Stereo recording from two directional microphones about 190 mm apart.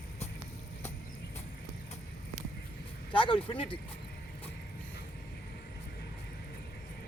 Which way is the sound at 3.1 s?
25° left (ahead or behind).